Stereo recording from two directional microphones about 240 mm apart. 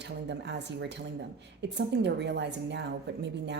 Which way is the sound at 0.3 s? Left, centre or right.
Right.